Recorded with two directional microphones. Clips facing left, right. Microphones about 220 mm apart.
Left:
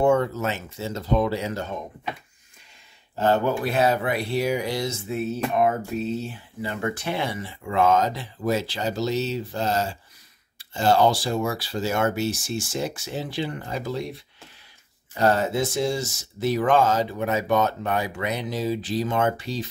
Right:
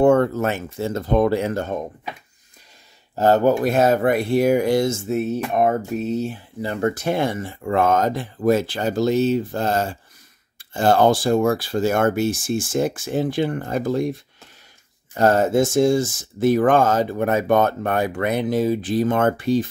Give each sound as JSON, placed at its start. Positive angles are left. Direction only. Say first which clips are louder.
{"t": 0.0, "sound": "speech", "louder": "right 5 dB", "side_deg": -55}
{"t": 3.2, "sound": "speech", "louder": "right 6 dB", "side_deg": -40}
{"t": 15.1, "sound": "speech", "louder": "right 5 dB", "side_deg": -50}